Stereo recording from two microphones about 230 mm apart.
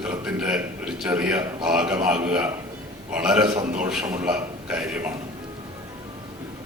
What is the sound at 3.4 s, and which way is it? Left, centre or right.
Speech, centre.